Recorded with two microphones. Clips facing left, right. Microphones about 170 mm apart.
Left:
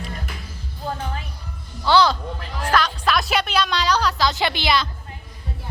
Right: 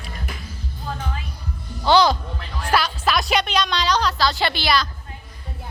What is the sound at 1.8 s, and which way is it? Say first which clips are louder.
Music: right 1 dB; 15° right (ahead or behind).